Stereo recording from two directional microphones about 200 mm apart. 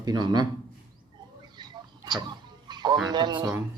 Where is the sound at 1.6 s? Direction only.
20° right (ahead or behind).